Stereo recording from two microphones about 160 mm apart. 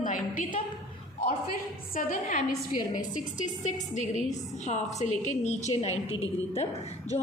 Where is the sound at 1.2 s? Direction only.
60° left (ahead or behind).